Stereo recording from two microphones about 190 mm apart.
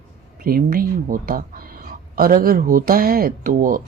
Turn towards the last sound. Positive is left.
turn(degrees=-45)  # may be behind; listen again after turning